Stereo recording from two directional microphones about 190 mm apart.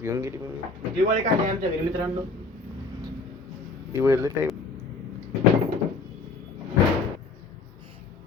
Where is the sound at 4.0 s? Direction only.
15° right (ahead or behind).